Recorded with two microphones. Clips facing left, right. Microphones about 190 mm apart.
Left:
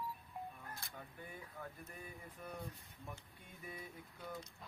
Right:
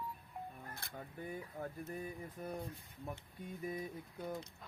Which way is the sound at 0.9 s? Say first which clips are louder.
Right 7 dB; 40° right (ahead or behind).